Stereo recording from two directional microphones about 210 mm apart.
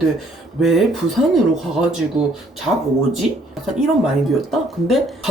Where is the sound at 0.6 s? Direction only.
Centre (ahead or behind).